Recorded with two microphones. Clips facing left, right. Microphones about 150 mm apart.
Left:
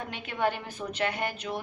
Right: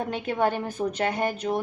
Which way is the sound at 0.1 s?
45° right (ahead or behind).